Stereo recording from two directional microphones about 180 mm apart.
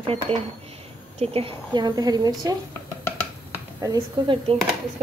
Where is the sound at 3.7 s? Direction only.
20° right (ahead or behind).